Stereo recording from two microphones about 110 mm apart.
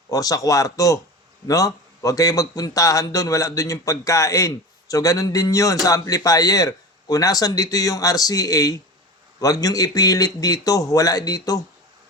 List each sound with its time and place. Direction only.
0.1 s a man's voice: 35° left (ahead or behind)